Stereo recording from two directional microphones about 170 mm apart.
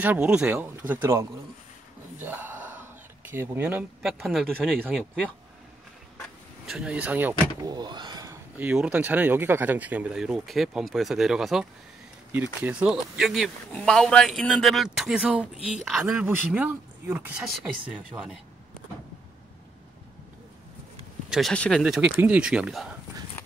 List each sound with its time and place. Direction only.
0.0 s speech: 10° right (ahead or behind)
2.1 s a sound: 10° right (ahead or behind)
3.3 s speech: 10° right (ahead or behind)
6.6 s speech: 5° right (ahead or behind)
7.6 s speech: 25° right (ahead or behind)
8.5 s speech: 10° right (ahead or behind)
21.3 s speech: centre (ahead or behind)